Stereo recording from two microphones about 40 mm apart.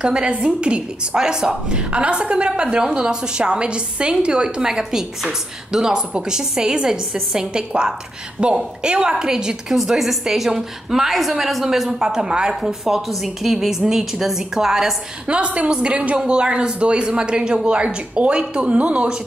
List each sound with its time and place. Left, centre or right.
0.0 s a woman's voice: right
8.4 s a woman's voice: right
9.8 s a woman's voice: centre
12.8 s a woman's voice: centre
15.2 s a woman's voice: right